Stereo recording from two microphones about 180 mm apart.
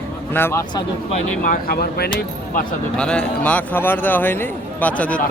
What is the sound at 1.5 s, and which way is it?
Speech, 60° left (ahead or behind).